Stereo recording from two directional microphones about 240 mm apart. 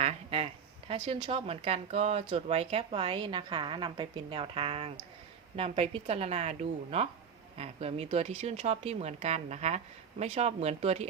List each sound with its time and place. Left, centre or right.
0.0 s speech: right